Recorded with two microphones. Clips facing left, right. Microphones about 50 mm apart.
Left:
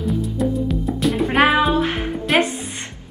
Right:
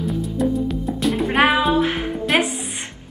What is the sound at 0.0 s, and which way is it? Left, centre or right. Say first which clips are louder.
Music: even; centre.